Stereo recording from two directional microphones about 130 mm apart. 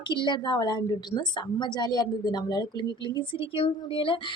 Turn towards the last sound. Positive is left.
turn(degrees=45)  # may be behind; listen again after turning